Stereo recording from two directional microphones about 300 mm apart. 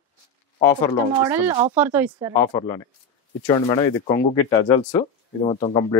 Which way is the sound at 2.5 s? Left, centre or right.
Centre.